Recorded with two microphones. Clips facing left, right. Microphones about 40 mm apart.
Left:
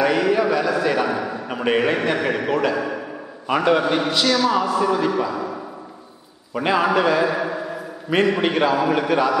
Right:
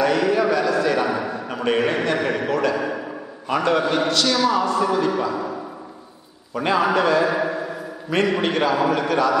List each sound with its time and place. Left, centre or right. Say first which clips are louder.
0.0 s a sound: even; centre
1.5 s a man's voice: left 1 dB; centre
6.5 s a man's voice: left 1 dB; centre